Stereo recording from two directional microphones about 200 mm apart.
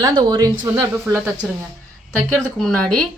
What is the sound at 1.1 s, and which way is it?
Speech, centre (ahead or behind).